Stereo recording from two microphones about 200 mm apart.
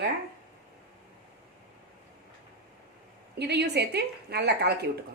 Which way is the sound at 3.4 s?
55° right (ahead or behind).